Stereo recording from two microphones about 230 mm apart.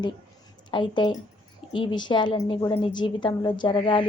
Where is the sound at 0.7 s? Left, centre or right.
Left.